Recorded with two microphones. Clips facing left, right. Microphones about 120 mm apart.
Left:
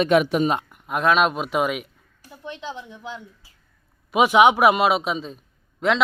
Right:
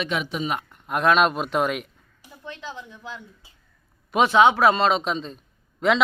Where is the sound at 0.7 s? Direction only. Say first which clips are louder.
Even; 5° left (ahead or behind).